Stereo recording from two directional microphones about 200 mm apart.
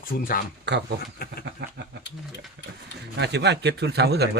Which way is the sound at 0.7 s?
60° right (ahead or behind).